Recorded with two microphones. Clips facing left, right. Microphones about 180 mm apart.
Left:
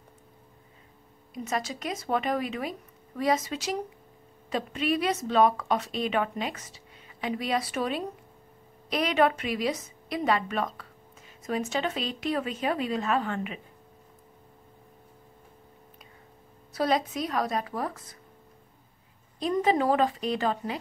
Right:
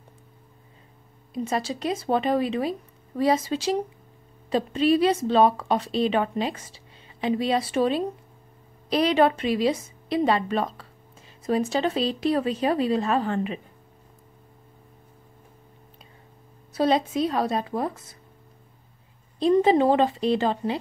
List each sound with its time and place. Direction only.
1.3 s a woman's voice: 30° right (ahead or behind)
16.7 s a woman's voice: 25° right (ahead or behind)
19.4 s a woman's voice: 25° right (ahead or behind)